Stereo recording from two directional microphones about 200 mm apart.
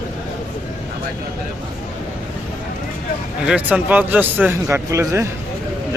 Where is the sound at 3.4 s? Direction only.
5° right (ahead or behind).